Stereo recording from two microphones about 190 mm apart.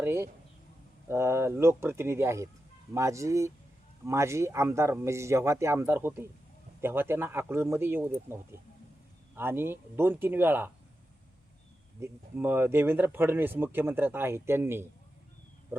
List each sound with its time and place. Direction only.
0.0 s a sound: 15° right (ahead or behind)
1.0 s speech: 15° right (ahead or behind)
11.9 s speech: 15° right (ahead or behind)